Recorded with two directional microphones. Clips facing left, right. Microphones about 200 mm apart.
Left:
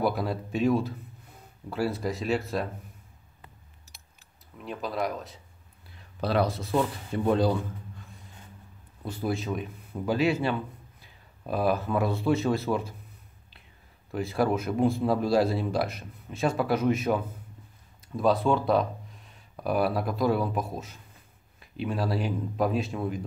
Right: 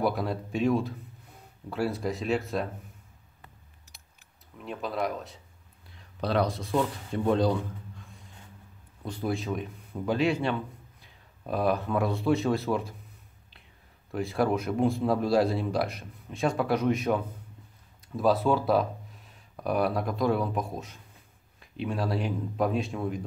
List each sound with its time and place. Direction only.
0.0 s speech: centre (ahead or behind)
4.6 s speech: centre (ahead or behind)
14.1 s speech: centre (ahead or behind)